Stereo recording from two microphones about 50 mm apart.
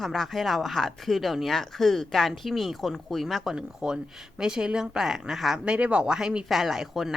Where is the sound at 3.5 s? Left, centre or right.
Centre.